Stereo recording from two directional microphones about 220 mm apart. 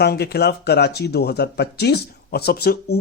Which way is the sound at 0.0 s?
45° left (ahead or behind).